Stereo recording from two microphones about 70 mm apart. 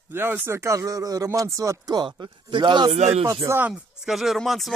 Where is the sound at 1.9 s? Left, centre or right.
Right.